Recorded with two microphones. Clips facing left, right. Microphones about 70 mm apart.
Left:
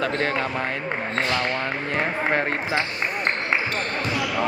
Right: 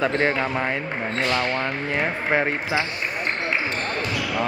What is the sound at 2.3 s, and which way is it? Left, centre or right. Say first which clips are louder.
Speech: right 4 dB; centre.